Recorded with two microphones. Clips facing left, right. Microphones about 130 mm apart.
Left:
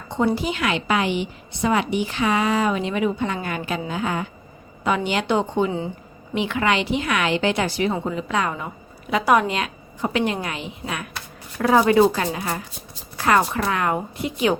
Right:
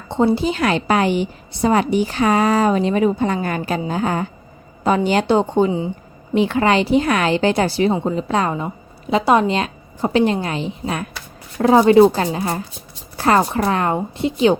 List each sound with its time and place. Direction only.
0.1 s a woman's voice: 30° right (ahead or behind)